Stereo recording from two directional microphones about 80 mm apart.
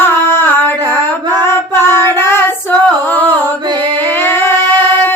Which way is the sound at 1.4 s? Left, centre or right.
Left.